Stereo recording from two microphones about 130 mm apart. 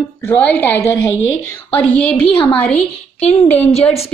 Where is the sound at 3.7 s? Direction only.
50° left (ahead or behind).